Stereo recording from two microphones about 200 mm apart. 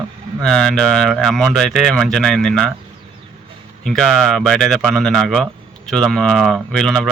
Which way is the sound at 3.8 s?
5° left (ahead or behind).